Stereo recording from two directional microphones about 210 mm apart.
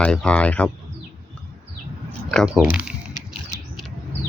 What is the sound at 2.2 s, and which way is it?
Speech, centre (ahead or behind).